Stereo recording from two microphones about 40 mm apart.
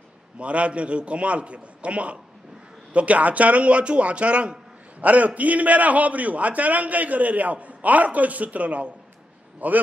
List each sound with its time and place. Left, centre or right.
0.4 s a man's voice: right